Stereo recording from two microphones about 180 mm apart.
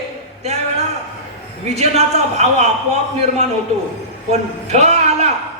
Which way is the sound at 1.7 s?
40° right (ahead or behind).